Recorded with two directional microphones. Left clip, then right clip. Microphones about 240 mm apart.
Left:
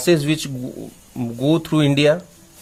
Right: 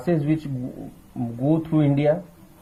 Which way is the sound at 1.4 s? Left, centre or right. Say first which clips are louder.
Left 4 dB; left.